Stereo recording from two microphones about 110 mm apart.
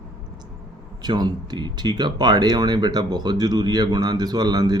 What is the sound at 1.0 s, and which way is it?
Speech, 40° right (ahead or behind).